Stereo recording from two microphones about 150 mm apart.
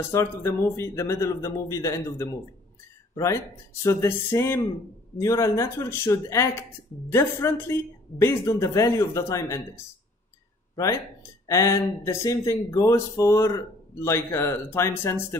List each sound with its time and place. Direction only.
0.0 s speech: 15° left (ahead or behind)
3.8 s a sound: 15° left (ahead or behind)
5.2 s speech: 20° left (ahead or behind)
11.4 s speech: 20° left (ahead or behind)